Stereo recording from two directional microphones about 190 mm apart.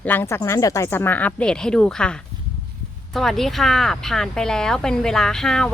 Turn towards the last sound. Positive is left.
turn(degrees=5)  # may be behind; listen again after turning